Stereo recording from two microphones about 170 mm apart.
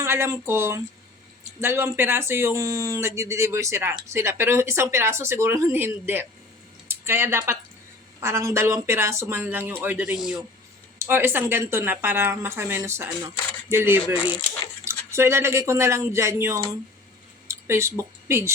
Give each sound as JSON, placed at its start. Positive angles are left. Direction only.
{"t": 0.0, "sound": "speech", "side_deg": -15}
{"t": 14.0, "sound": "speech", "side_deg": 30}
{"t": 14.8, "sound": "speech", "side_deg": -15}